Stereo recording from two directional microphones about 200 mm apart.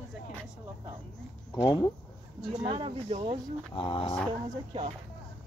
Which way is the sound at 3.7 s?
25° left (ahead or behind).